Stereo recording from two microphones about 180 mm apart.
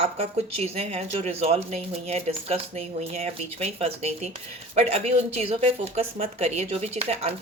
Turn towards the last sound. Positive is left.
turn(degrees=-35)  # may be behind; listen again after turning